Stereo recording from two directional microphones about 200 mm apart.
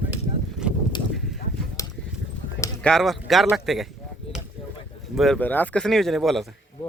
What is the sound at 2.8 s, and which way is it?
Speech, centre (ahead or behind).